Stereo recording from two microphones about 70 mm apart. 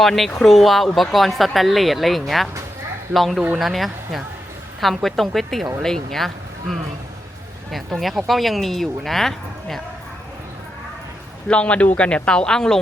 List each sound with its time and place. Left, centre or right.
0.0 s speech: centre
11.4 s speech: centre